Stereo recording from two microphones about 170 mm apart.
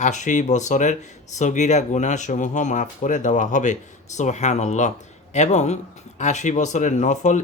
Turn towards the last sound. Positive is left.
turn(degrees=45)  # may be behind; listen again after turning